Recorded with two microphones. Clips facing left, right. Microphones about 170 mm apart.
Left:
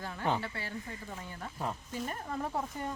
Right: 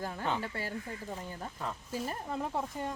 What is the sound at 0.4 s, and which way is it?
Speech, 40° right (ahead or behind).